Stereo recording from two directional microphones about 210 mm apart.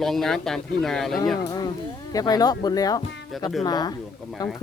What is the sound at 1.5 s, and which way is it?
Speech, 20° left (ahead or behind).